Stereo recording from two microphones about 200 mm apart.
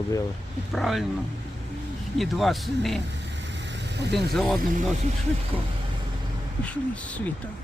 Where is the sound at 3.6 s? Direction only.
60° right (ahead or behind).